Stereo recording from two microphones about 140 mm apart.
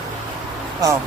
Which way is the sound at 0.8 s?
25° right (ahead or behind).